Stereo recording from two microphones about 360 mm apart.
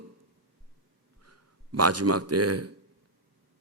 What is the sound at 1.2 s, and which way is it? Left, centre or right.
A man's voice, right.